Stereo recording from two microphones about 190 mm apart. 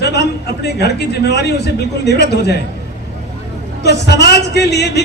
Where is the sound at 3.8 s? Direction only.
65° left (ahead or behind).